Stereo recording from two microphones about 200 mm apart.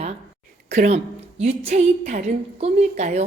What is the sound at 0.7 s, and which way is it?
A woman's voice, 35° right (ahead or behind).